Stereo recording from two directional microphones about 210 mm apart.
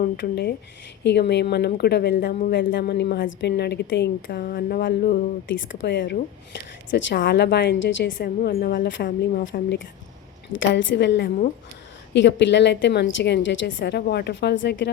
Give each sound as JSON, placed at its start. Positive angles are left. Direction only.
{"t": 0.2, "sound": "a woman's voice", "side_deg": 55}
{"t": 9.4, "sound": "a woman's voice", "side_deg": 60}